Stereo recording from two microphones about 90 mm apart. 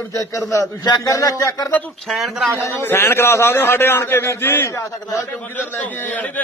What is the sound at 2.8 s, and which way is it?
A man's voice, 25° left (ahead or behind).